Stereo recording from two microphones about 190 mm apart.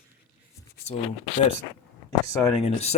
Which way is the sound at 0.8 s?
35° left (ahead or behind).